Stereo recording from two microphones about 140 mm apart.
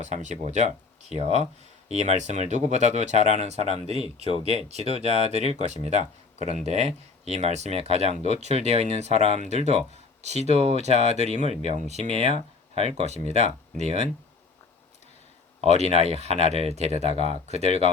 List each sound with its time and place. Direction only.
0.0 s speech: 55° right (ahead or behind)
15.6 s speech: 50° right (ahead or behind)